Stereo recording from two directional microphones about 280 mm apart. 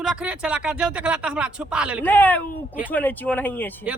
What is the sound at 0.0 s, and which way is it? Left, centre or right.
A man's voice, centre.